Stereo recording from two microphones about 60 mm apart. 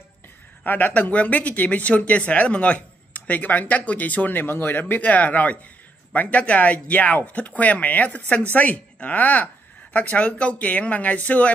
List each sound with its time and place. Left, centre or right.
0.7 s speech: left